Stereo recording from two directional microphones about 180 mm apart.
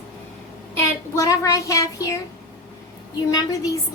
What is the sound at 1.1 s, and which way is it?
A woman's voice, 20° left (ahead or behind).